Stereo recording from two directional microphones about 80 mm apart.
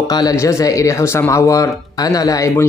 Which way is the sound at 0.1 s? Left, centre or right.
Left.